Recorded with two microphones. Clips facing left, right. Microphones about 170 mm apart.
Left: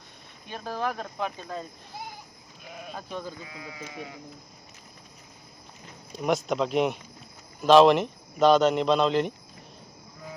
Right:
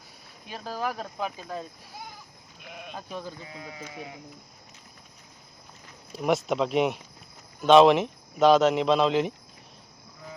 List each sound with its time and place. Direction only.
0.4 s speech: 5° right (ahead or behind)
2.8 s speech: centre (ahead or behind)
3.4 s speech: 30° right (ahead or behind)
6.1 s speech: centre (ahead or behind)